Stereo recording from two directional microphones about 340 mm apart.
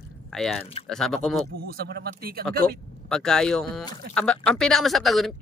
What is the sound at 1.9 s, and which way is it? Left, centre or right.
Speech, right.